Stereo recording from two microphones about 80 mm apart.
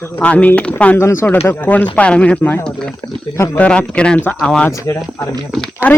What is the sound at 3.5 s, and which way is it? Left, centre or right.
Speech, centre.